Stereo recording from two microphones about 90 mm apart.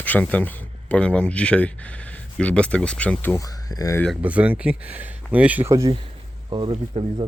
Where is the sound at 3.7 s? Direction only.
40° left (ahead or behind).